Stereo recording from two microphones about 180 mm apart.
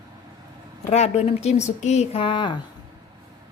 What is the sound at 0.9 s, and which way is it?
Speech, 35° left (ahead or behind).